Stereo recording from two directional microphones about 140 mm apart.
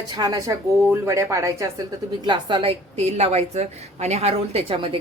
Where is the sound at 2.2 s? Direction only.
35° right (ahead or behind).